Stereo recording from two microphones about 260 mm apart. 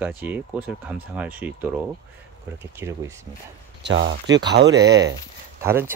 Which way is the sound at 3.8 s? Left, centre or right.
Right.